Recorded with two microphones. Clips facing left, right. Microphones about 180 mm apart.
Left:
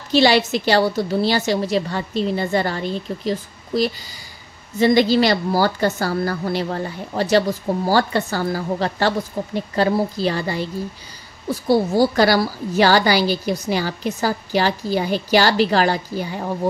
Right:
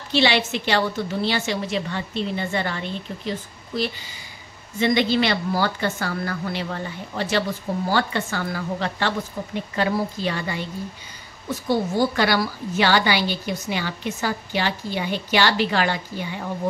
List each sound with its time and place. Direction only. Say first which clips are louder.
0.1 s a woman's voice: left 5 dB; 40° left (ahead or behind)